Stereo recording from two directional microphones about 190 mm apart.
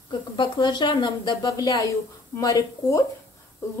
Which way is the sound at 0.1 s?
25° left (ahead or behind).